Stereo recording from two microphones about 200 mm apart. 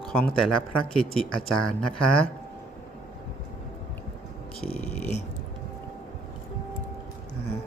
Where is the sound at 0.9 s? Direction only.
5° left (ahead or behind).